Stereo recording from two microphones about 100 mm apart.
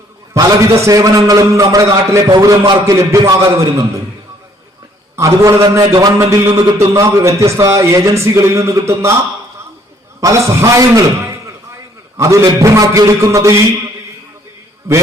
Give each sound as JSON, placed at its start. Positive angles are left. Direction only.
{"t": 0.3, "sound": "a man's voice", "side_deg": -35}
{"t": 5.1, "sound": "speech", "side_deg": -30}
{"t": 5.9, "sound": "a man's voice", "side_deg": -40}
{"t": 6.1, "sound": "a man's voice", "side_deg": -25}
{"t": 10.2, "sound": "a man's voice", "side_deg": -30}